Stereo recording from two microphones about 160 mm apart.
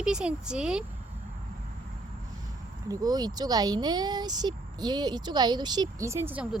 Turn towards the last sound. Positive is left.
turn(degrees=-15)  # may be behind; listen again after turning